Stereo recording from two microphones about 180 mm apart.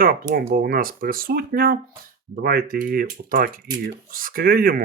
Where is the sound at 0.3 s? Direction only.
55° right (ahead or behind).